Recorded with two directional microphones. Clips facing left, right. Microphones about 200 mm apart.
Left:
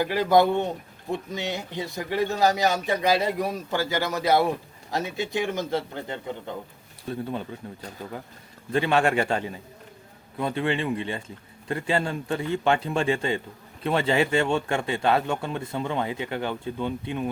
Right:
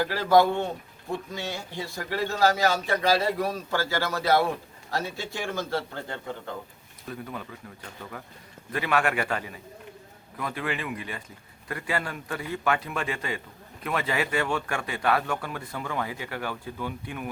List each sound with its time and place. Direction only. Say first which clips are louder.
0.0 s a man's voice: left 1 dB; 15° left (ahead or behind)
7.1 s speech: left 6 dB; 30° left (ahead or behind)